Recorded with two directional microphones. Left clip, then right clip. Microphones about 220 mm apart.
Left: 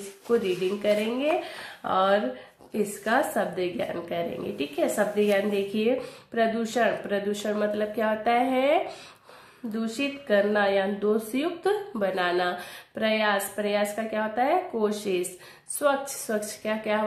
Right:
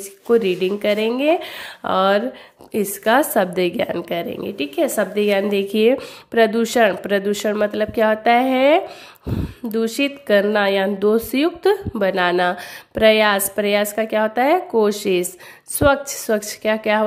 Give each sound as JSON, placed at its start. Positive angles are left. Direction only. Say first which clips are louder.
{"t": 0.3, "sound": "a woman's voice", "louder": "right 8 dB", "side_deg": -50}